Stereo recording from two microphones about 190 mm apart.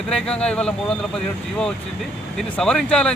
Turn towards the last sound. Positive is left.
turn(degrees=5)  # may be behind; listen again after turning